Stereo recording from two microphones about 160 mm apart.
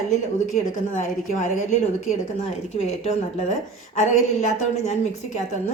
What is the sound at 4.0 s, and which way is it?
Speech, 45° left (ahead or behind).